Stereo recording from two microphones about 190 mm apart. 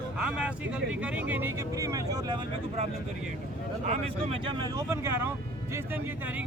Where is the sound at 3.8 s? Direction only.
40° right (ahead or behind).